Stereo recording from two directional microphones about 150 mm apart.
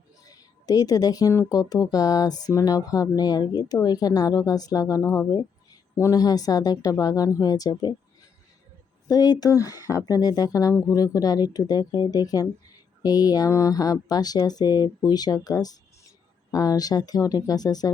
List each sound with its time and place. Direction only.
0.3 s a woman's voice: 25° left (ahead or behind)
9.0 s speech: 25° left (ahead or behind)